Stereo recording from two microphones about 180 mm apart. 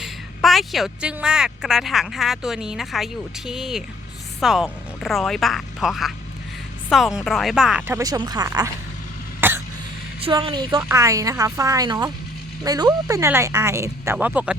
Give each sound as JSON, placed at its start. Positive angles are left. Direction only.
{"t": 0.0, "sound": "speech", "side_deg": 0}
{"t": 9.4, "sound": "cough", "side_deg": -10}
{"t": 10.2, "sound": "speech", "side_deg": -30}